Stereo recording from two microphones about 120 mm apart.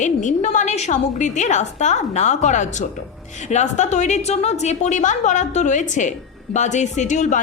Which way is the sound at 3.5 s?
80° left.